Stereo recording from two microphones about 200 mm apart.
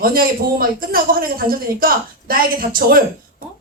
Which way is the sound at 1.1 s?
45° right (ahead or behind).